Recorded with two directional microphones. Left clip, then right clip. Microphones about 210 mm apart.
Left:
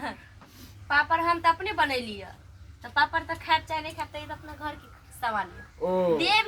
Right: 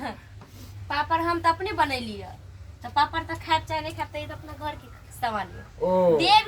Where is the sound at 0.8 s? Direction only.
Centre (ahead or behind).